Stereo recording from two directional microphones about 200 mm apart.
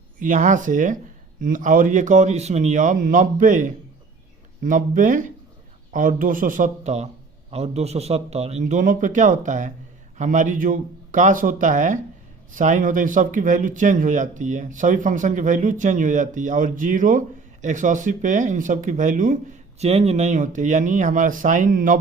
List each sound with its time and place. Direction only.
0.2 s a man's voice: 40° right (ahead or behind)